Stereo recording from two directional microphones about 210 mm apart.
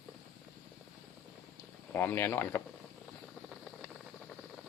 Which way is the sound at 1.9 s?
10° left (ahead or behind).